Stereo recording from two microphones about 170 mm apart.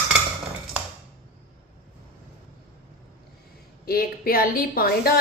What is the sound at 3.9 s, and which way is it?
A woman's voice, 60° left (ahead or behind).